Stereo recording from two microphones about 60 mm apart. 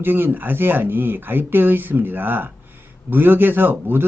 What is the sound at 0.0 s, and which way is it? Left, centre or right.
A man's voice, right.